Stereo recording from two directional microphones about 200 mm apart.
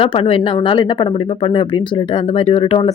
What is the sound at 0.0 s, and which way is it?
A woman's voice, 25° left (ahead or behind).